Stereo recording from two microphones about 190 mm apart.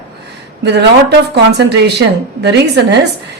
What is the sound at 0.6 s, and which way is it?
A woman's voice, 65° right (ahead or behind).